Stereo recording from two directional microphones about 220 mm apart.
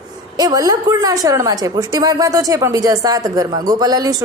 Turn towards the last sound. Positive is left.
turn(degrees=-15)  # may be behind; listen again after turning